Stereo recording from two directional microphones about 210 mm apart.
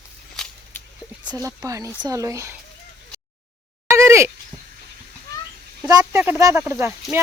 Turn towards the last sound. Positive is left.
turn(degrees=-5)  # may be behind; listen again after turning